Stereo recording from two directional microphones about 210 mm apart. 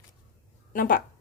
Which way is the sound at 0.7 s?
40° left (ahead or behind).